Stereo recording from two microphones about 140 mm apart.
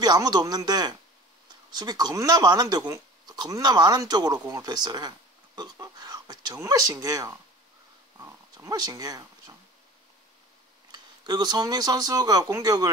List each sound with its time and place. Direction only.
0.0 s speech: 30° right (ahead or behind)
10.9 s speech: 30° right (ahead or behind)